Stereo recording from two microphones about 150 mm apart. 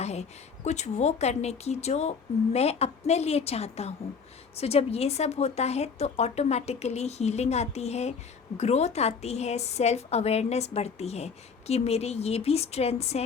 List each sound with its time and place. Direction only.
0.0 s a woman's voice: 45° left (ahead or behind)